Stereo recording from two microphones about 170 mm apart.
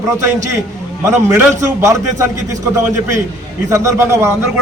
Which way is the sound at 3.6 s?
20° right (ahead or behind).